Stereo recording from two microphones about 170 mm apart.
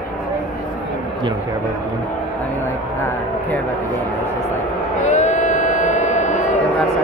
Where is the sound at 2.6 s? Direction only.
15° left (ahead or behind).